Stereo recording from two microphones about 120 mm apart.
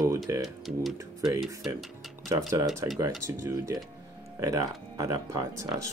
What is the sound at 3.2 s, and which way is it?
Speech, 25° right (ahead or behind).